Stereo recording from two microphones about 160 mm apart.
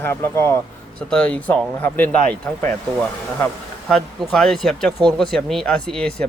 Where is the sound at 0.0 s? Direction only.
15° left (ahead or behind).